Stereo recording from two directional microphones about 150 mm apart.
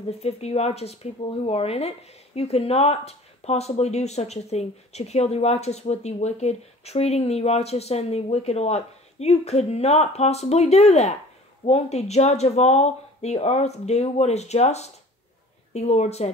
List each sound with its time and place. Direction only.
0.2 s speech: 45° left (ahead or behind)